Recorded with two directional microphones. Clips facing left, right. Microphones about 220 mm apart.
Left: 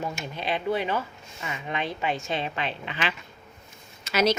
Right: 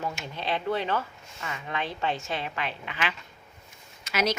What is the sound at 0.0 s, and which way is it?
A woman's voice, 15° left (ahead or behind).